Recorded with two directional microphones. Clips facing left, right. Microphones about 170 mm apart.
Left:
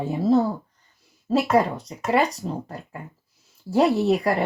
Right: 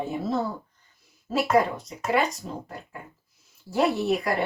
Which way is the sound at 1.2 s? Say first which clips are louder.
Left 2 dB; 35° left (ahead or behind).